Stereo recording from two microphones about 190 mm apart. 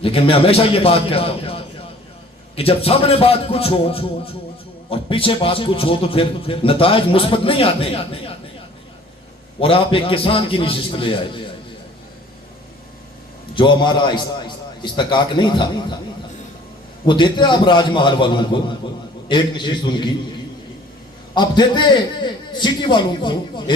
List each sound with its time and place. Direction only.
0.0 s a man's voice: 30° left (ahead or behind)
9.6 s a man's voice: 30° left (ahead or behind)
13.6 s a man's voice: 25° left (ahead or behind)
17.1 s a man's voice: 25° left (ahead or behind)
21.3 s a man's voice: 25° left (ahead or behind)